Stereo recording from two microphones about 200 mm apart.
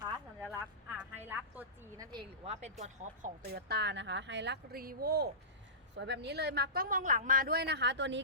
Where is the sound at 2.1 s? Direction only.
30° right (ahead or behind).